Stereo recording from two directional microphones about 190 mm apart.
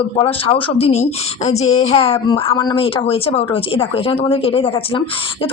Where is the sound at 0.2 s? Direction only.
30° left (ahead or behind).